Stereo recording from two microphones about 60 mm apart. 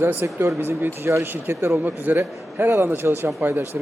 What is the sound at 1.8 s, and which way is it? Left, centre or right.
Speech, right.